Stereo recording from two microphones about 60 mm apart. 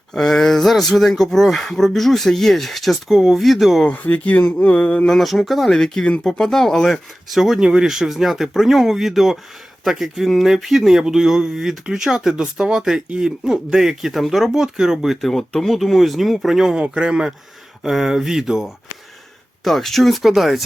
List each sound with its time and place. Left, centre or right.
0.1 s speech: centre
3.8 s speech: left
5.0 s speech: centre
16.7 s speech: centre
19.6 s speech: centre